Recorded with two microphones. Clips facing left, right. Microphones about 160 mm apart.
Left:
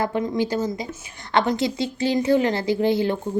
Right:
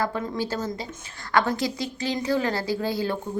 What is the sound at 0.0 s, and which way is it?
A woman's voice, 20° left (ahead or behind).